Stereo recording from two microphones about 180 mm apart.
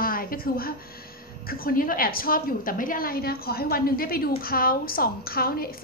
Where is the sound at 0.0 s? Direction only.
55° left (ahead or behind).